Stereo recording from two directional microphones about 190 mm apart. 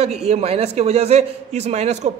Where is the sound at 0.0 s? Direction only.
35° right (ahead or behind).